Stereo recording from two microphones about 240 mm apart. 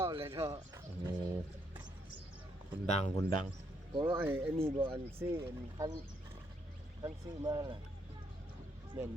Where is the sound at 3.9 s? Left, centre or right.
Centre.